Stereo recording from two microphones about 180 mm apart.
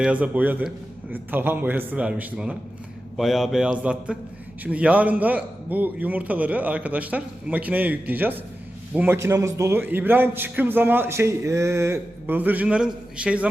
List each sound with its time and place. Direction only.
0.0 s a man's voice: 5° right (ahead or behind)